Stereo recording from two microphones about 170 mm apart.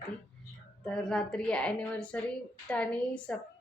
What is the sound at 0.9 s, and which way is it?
A woman's voice, 5° left (ahead or behind).